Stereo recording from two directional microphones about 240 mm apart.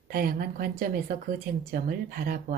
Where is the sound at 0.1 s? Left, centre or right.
Right.